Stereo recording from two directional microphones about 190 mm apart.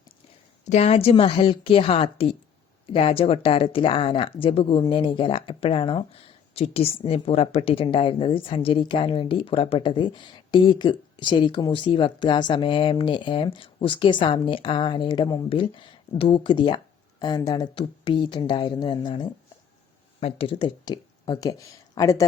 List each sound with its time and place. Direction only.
0.7 s speech: 35° left (ahead or behind); by 22.2 s 15° left (ahead or behind)